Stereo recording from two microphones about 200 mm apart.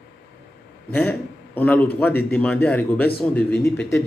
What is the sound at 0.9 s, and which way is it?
A man's voice, 5° left (ahead or behind).